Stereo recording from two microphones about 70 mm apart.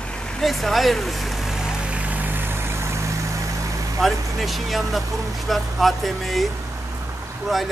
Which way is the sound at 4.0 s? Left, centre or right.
Centre.